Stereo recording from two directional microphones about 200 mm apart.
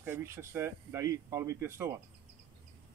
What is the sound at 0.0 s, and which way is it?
Speech, 10° right (ahead or behind).